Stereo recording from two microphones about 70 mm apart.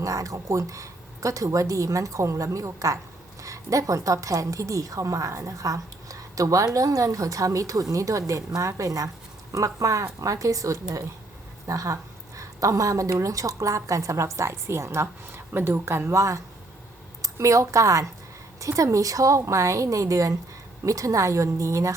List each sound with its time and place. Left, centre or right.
0.0 s a woman's voice: right